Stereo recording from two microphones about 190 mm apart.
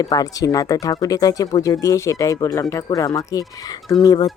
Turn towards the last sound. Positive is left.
turn(degrees=20)  # may be behind; listen again after turning